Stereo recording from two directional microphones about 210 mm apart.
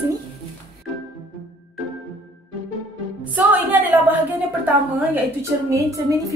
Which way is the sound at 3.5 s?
10° right (ahead or behind).